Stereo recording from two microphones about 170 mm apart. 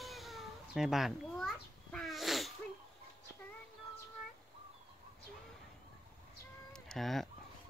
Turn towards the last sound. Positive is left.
turn(degrees=0)  # may be behind; listen again after turning